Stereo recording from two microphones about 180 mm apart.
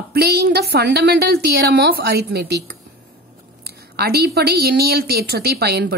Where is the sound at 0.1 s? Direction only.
60° right (ahead or behind).